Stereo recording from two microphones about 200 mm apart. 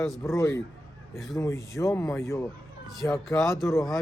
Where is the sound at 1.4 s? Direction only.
15° left (ahead or behind).